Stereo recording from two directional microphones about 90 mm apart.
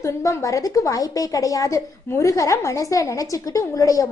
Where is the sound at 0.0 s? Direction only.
35° left (ahead or behind).